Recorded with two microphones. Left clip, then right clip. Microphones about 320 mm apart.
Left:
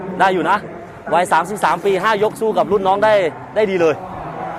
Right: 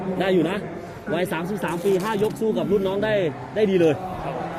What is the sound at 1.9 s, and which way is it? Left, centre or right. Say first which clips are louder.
Speech: left 7 dB; left.